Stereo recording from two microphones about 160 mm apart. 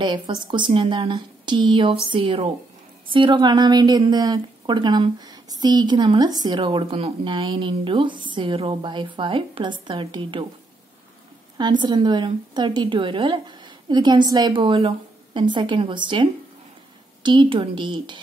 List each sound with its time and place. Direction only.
0.0 s a woman's voice: 30° right (ahead or behind)
11.5 s a woman's voice: 25° right (ahead or behind)